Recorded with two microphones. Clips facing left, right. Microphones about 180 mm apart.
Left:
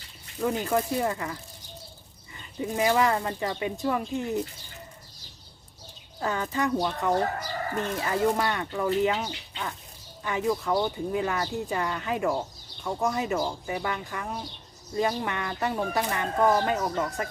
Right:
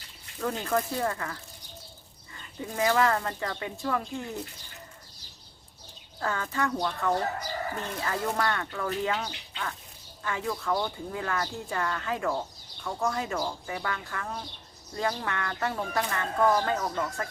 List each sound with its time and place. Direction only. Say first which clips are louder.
0.3 s speech: left 3 dB; 15° left (ahead or behind)
2.6 s speech: left 2 dB; 20° left (ahead or behind)
6.1 s speech: left 2 dB; 20° left (ahead or behind)